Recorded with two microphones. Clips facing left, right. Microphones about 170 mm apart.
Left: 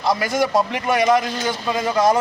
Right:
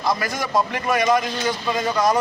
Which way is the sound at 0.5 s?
25° left (ahead or behind).